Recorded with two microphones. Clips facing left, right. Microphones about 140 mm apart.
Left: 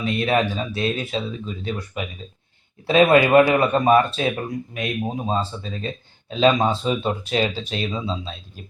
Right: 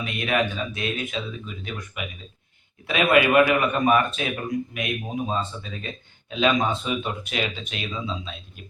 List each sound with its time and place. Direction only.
0.0 s speech: 35° left (ahead or behind)